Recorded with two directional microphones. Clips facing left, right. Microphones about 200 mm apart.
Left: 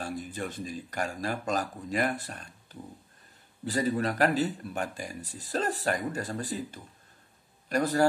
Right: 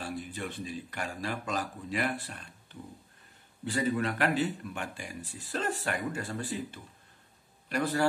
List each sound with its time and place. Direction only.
0.0 s speech: 45° left (ahead or behind)